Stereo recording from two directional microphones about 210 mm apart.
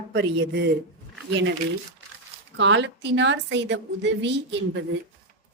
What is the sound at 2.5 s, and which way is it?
A woman's voice, 60° right (ahead or behind).